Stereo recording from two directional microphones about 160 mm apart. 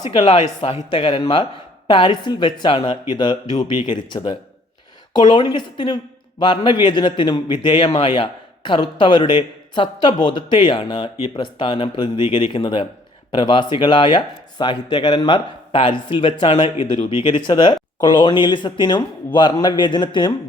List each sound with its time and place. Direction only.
0.1 s a man's voice: 35° left (ahead or behind)